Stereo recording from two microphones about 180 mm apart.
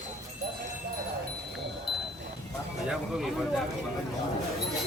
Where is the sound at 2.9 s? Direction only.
Centre (ahead or behind).